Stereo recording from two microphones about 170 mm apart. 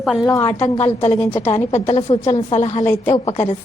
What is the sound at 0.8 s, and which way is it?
A woman's voice, 40° left (ahead or behind).